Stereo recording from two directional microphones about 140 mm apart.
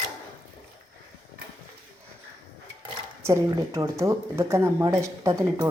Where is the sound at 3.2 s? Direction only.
20° right (ahead or behind).